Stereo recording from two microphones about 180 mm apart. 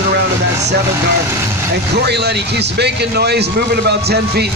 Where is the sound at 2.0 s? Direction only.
65° right (ahead or behind).